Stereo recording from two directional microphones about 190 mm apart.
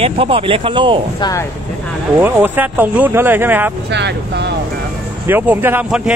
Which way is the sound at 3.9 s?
65° right (ahead or behind).